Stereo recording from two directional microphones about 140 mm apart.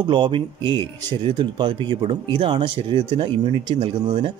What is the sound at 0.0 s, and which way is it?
Speech, 35° right (ahead or behind).